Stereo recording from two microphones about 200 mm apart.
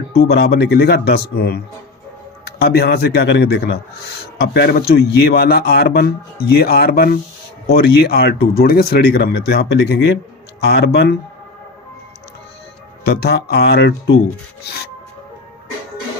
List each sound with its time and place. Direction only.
0.2 s a man's voice: 50° left (ahead or behind)
13.2 s a man's voice: 55° left (ahead or behind)